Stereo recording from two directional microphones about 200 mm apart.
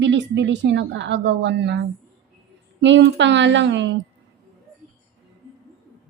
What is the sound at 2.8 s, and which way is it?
A woman's voice, 65° right (ahead or behind).